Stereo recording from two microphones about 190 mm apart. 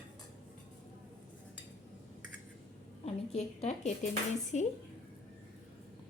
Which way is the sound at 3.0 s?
35° left (ahead or behind).